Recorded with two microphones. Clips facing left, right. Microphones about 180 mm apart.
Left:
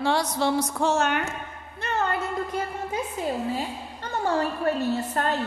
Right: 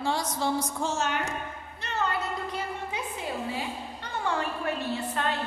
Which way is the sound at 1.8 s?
50° left (ahead or behind).